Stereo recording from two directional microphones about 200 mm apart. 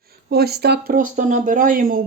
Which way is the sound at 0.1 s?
50° right (ahead or behind).